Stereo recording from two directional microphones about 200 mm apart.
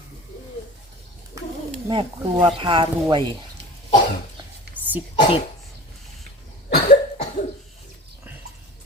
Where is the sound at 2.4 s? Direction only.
25° right (ahead or behind).